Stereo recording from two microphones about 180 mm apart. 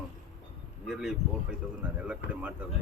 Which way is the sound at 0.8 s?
5° right (ahead or behind).